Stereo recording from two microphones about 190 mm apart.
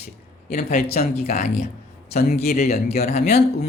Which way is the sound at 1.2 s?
35° left (ahead or behind).